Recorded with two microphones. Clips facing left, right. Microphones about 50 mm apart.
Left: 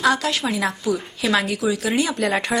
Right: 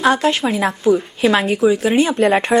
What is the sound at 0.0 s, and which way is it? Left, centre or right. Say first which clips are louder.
Speech: right 5 dB; right.